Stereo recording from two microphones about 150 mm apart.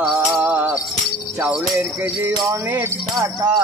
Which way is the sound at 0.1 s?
10° right (ahead or behind).